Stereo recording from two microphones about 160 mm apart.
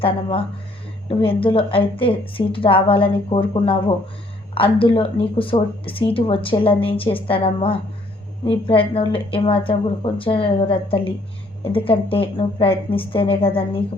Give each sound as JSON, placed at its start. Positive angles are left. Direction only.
{"t": 0.0, "sound": "a woman's voice", "side_deg": 35}